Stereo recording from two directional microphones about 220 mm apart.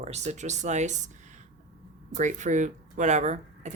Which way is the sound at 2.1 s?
35° right (ahead or behind).